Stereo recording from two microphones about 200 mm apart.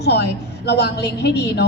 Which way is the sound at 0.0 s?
55° left (ahead or behind).